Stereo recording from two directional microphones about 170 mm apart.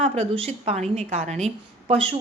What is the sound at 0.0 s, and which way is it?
A woman's voice, 35° right (ahead or behind).